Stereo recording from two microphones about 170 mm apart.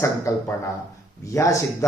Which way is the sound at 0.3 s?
20° left (ahead or behind).